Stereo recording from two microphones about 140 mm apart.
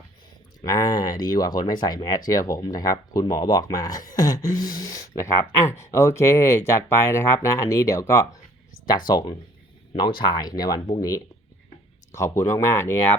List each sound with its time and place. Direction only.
0.7 s speech: 30° left (ahead or behind)